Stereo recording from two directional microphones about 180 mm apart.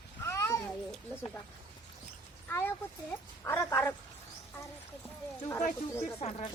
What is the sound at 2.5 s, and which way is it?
A woman's voice, 10° left (ahead or behind).